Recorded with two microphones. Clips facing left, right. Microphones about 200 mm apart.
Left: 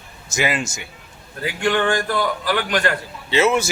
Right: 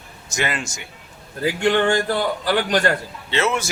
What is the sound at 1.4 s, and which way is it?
A man's voice, 30° right (ahead or behind).